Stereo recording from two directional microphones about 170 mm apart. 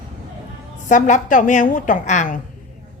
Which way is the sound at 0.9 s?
50° left (ahead or behind).